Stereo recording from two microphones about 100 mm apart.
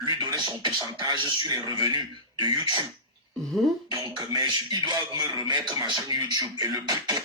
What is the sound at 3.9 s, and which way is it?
Speech, 50° right (ahead or behind).